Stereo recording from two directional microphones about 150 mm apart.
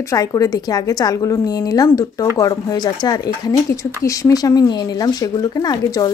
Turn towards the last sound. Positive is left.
turn(degrees=25)  # may be behind; listen again after turning